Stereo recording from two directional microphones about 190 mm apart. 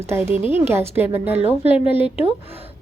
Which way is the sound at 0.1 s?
15° right (ahead or behind).